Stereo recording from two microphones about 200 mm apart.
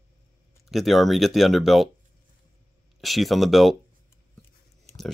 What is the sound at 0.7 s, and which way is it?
Speech, centre (ahead or behind).